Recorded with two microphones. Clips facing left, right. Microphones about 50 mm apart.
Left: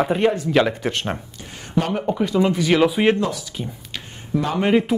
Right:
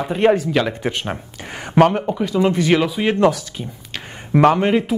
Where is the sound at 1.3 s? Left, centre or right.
Right.